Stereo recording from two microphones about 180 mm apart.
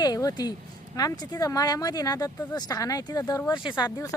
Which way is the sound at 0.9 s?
20° left (ahead or behind).